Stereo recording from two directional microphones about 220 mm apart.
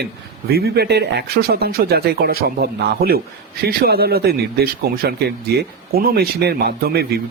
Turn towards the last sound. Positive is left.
turn(degrees=-45)  # may be behind; listen again after turning